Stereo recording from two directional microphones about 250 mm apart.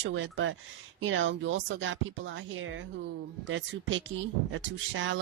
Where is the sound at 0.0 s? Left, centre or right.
Right.